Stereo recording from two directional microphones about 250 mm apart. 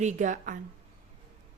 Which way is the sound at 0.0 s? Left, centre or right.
Right.